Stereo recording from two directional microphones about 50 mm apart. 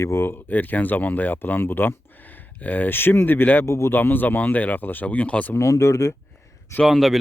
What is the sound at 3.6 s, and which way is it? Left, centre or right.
Speech, left.